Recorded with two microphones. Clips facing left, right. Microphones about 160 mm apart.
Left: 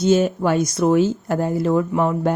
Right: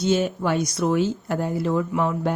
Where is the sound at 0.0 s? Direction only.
45° left (ahead or behind).